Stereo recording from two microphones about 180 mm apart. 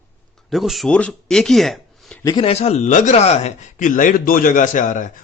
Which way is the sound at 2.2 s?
20° left (ahead or behind).